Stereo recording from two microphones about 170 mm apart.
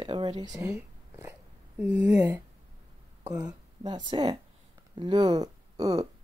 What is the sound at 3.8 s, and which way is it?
Speech, 25° right (ahead or behind).